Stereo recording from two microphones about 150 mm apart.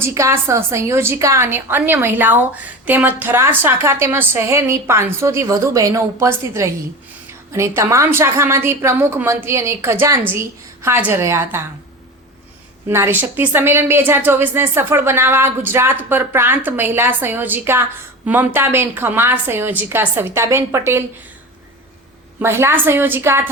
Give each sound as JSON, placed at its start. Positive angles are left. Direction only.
{"t": 0.0, "sound": "a woman's voice", "side_deg": -20}
{"t": 12.9, "sound": "a woman's voice", "side_deg": -15}
{"t": 22.4, "sound": "a woman's voice", "side_deg": -15}